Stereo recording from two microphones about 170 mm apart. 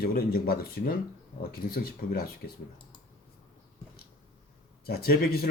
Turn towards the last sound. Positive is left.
turn(degrees=65)  # may be behind; listen again after turning